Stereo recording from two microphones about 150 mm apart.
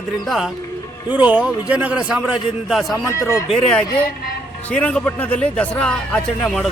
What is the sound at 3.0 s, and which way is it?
Speech, 20° left (ahead or behind).